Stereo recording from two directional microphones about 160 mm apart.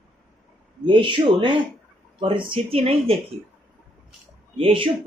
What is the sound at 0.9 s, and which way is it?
A woman's voice, 30° right (ahead or behind).